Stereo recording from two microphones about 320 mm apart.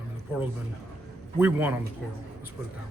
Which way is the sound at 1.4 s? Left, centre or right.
Centre.